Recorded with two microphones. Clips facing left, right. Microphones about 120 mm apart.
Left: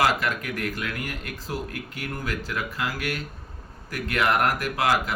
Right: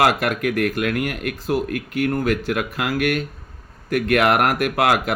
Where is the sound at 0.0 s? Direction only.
65° right (ahead or behind).